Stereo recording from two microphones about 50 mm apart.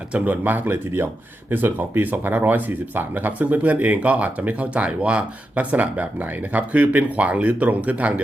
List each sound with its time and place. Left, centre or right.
0.1 s speech: right